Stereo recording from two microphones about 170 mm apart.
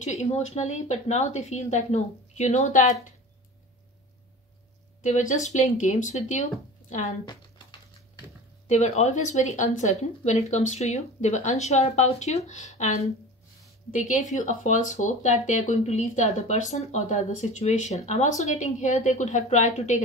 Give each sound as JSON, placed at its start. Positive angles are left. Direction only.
{"t": 0.0, "sound": "speech", "side_deg": 40}
{"t": 5.0, "sound": "speech", "side_deg": 45}
{"t": 8.6, "sound": "speech", "side_deg": 45}